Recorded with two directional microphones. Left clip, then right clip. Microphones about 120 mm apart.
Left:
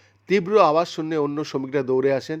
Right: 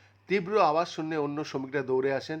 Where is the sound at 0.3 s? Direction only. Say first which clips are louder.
Left 7 dB; 40° left (ahead or behind).